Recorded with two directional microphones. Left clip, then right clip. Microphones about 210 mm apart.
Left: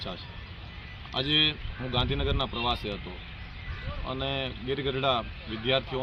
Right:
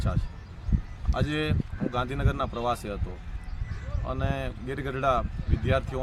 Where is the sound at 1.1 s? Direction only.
20° right (ahead or behind).